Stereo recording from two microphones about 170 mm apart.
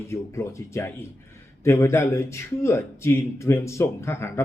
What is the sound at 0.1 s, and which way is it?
A man's voice, 15° left (ahead or behind).